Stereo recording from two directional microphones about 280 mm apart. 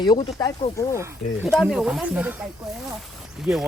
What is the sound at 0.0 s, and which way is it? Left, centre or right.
Speech, centre.